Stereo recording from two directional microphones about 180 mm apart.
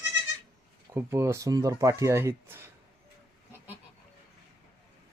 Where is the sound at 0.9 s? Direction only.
15° right (ahead or behind).